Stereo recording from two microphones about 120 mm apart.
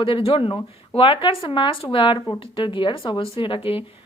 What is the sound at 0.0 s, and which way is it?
Speech, 50° left (ahead or behind).